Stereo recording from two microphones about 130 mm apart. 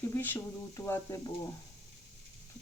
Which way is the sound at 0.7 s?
20° left (ahead or behind).